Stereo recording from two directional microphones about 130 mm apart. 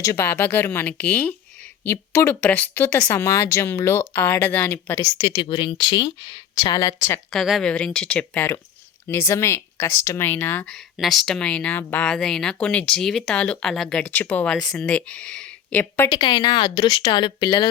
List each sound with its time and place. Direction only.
0.0 s speech: 20° left (ahead or behind)
5.1 s speech: 50° left (ahead or behind); by 7.2 s 25° left (ahead or behind)
7.3 s speech: centre (ahead or behind); by 10.7 s 15° left (ahead or behind)
10.7 s speech: centre (ahead or behind)
16.0 s speech: 35° left (ahead or behind)